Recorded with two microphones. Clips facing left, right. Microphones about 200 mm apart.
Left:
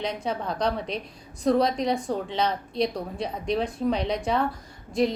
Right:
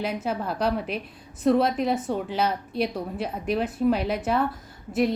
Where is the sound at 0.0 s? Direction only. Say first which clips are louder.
Right 1 dB; 5° right (ahead or behind).